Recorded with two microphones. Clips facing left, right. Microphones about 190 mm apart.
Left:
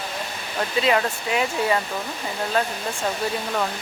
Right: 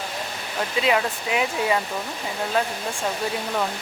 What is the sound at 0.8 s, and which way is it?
Speech, 10° right (ahead or behind).